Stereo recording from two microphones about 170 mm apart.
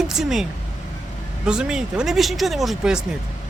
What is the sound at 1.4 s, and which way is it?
Speech, 5° right (ahead or behind).